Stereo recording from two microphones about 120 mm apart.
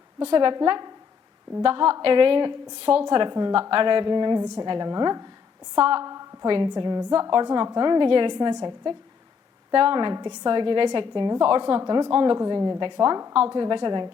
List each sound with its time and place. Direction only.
0.3 s a woman's voice: 40° right (ahead or behind)
5.8 s a woman's voice: 45° right (ahead or behind)